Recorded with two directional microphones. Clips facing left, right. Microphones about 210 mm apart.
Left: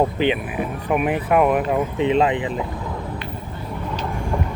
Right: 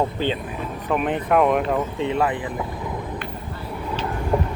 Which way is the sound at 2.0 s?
20° left (ahead or behind).